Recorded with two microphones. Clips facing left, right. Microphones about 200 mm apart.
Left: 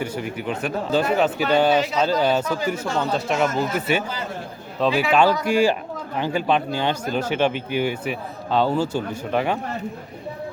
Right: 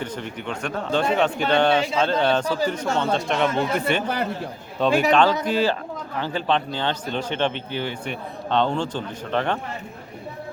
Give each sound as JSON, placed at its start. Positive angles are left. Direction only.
{"t": 0.0, "sound": "a man's voice", "side_deg": 10}
{"t": 4.0, "sound": "a man's voice", "side_deg": -60}
{"t": 4.8, "sound": "a man's voice", "side_deg": 0}
{"t": 5.5, "sound": "a man's voice", "side_deg": 10}